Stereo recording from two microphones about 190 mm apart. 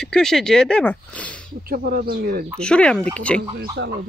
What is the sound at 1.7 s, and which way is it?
Speech, 50° right (ahead or behind).